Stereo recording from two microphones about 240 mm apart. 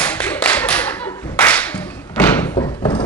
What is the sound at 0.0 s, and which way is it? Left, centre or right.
Clapping, centre.